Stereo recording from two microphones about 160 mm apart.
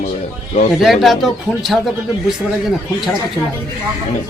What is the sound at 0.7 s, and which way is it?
Speech, centre (ahead or behind).